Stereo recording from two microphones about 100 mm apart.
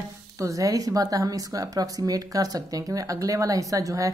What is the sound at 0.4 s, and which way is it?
Speech, 35° right (ahead or behind).